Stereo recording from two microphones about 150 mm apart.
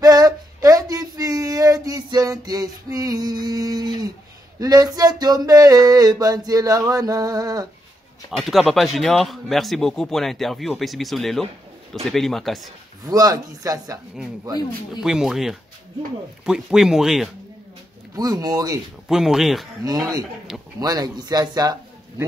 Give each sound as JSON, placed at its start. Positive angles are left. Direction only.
{"t": 0.0, "sound": "a sound", "side_deg": -25}
{"t": 4.6, "sound": "speech", "side_deg": -25}
{"t": 8.3, "sound": "speech", "side_deg": 0}
{"t": 13.0, "sound": "speech", "side_deg": -25}
{"t": 15.0, "sound": "speech", "side_deg": -5}
{"t": 18.1, "sound": "speech", "side_deg": -25}
{"t": 19.0, "sound": "speech", "side_deg": -5}
{"t": 19.8, "sound": "speech", "side_deg": -25}